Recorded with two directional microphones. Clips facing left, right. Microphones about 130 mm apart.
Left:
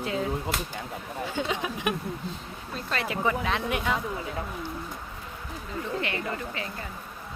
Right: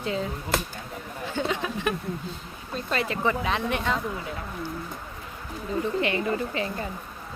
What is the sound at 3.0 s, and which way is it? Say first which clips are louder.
Speech: left 1 dB; 5° left (ahead or behind).